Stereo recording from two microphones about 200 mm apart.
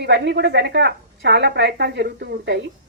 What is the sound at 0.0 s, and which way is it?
A woman's voice, 60° right (ahead or behind).